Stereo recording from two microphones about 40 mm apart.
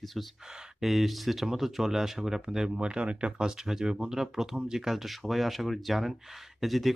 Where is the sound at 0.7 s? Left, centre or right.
Centre.